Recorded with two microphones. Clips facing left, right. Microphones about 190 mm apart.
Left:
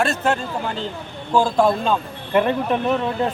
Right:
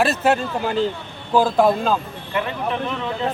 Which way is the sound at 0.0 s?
5° right (ahead or behind).